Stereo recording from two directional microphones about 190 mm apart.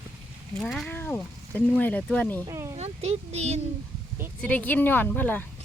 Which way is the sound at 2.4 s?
15° right (ahead or behind).